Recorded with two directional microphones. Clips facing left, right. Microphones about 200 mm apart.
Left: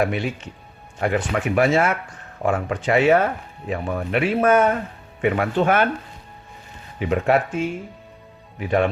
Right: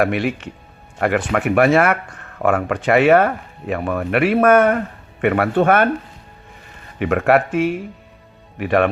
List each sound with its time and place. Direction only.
0.0 s speech: 65° right (ahead or behind)
7.0 s speech: 65° right (ahead or behind)